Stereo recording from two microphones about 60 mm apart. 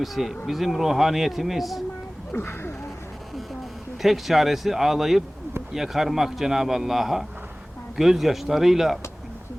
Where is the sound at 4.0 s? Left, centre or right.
Centre.